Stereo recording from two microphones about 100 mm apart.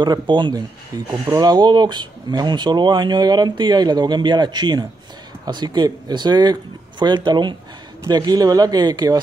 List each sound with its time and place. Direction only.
0.0 s speech: 45° right (ahead or behind)